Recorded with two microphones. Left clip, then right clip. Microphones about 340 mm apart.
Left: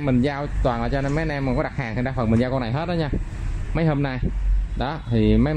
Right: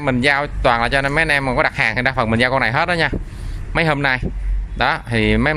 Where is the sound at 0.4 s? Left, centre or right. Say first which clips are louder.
Right 8 dB; right.